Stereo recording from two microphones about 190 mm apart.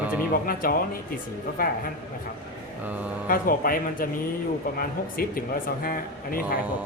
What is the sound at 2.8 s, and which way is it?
Mantra, 10° right (ahead or behind).